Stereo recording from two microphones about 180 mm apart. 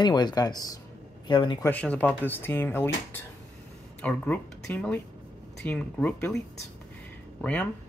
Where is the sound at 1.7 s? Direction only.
10° left (ahead or behind).